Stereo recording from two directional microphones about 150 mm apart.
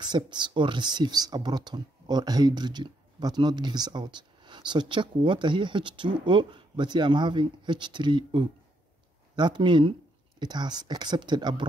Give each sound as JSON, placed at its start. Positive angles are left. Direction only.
{"t": 0.0, "sound": "speech", "side_deg": -30}